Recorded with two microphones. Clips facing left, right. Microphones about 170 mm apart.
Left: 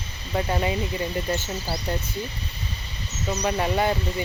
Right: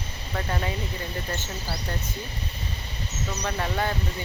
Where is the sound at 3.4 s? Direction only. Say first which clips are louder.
Left 5 dB; 15° left (ahead or behind).